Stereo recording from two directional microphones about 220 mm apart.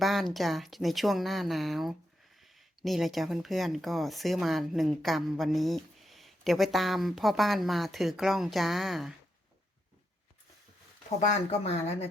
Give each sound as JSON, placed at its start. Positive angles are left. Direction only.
{"t": 0.0, "sound": "speech", "side_deg": 0}
{"t": 11.2, "sound": "speech", "side_deg": 30}